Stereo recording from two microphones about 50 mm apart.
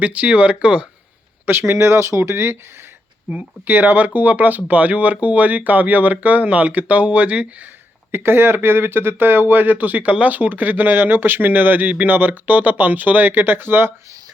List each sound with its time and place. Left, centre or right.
0.0 s speech: right
1.5 s speech: right
3.7 s speech: right
8.1 s speech: right